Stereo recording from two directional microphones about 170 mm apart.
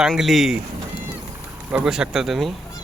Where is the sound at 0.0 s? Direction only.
Centre (ahead or behind).